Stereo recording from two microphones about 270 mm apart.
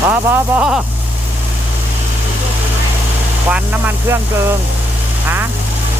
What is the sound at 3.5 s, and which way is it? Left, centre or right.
Speech, centre.